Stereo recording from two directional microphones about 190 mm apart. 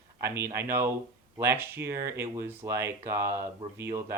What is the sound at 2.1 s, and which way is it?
Speech, 15° right (ahead or behind).